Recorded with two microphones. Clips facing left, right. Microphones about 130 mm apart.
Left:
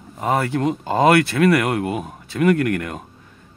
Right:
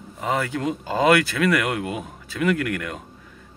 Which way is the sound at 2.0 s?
50° left (ahead or behind).